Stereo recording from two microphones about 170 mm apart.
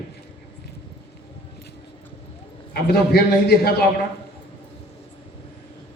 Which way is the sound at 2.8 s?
65° left (ahead or behind).